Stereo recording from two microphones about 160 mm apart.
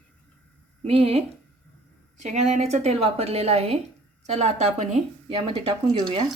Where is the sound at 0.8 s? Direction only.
35° right (ahead or behind).